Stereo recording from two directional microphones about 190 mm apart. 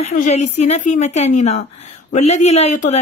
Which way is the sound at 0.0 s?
40° left (ahead or behind).